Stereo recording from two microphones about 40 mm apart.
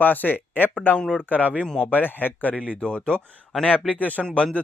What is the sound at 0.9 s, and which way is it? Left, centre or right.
Speech, left.